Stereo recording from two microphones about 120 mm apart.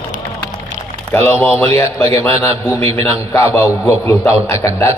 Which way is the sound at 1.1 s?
15° left (ahead or behind).